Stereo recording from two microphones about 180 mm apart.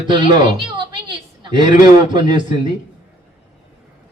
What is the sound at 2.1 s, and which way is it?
Speech, 25° right (ahead or behind).